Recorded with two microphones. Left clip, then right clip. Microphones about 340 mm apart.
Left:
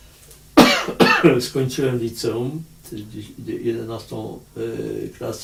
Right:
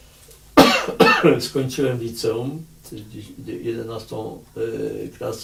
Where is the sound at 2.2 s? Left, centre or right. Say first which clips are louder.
Right 3 dB; centre.